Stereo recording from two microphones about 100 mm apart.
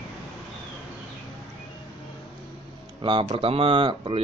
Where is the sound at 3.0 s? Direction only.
60° right (ahead or behind).